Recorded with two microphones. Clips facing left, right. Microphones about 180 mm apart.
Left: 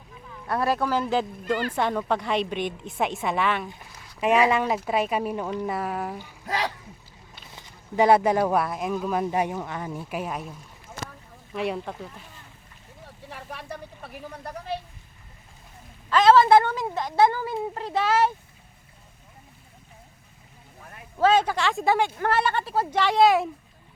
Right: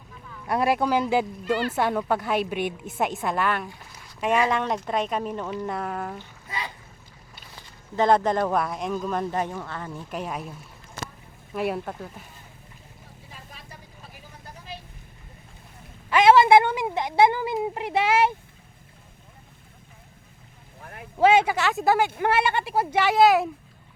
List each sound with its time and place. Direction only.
0.4 s speech: 15° right (ahead or behind); by 6.2 s 5° left (ahead or behind)
6.4 s speech: 80° left
7.5 s speech: 15° left (ahead or behind); by 12.2 s 5° right (ahead or behind)
13.2 s vehicle: 70° left (ahead or behind)
16.0 s speech: 15° right (ahead or behind)
20.8 s a sound: 70° right (ahead or behind)
21.2 s speech: 10° right (ahead or behind)